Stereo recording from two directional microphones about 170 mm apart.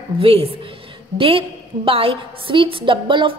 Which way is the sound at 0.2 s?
35° right (ahead or behind).